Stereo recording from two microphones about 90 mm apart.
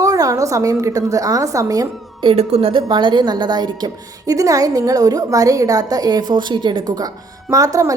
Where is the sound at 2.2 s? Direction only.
75° right (ahead or behind); by 7.0 s 55° right (ahead or behind).